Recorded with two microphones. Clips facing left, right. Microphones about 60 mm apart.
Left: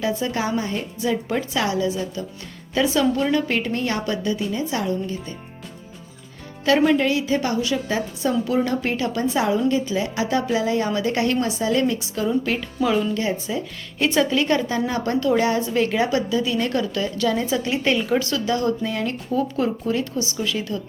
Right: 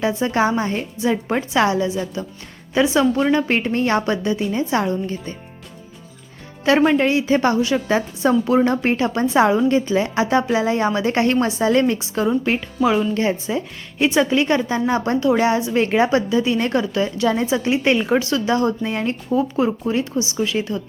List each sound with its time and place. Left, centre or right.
0.0 s a woman's voice: right
6.7 s a woman's voice: right
13.5 s a woman's voice: right
14.0 s a woman's voice: right
15.7 s a woman's voice: right